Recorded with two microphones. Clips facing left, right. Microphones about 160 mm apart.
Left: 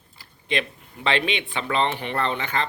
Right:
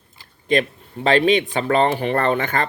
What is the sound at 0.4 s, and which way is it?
Speech, 40° right (ahead or behind).